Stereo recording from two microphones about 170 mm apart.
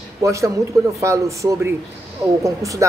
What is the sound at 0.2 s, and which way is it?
A woman's voice, 20° right (ahead or behind).